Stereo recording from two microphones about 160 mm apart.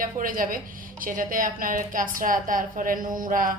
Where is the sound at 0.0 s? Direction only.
60° right (ahead or behind).